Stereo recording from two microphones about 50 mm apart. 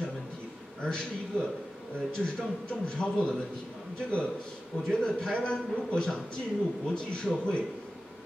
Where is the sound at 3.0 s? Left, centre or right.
Centre.